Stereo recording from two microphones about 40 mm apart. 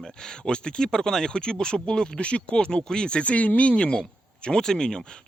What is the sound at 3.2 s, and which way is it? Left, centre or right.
Speech, left.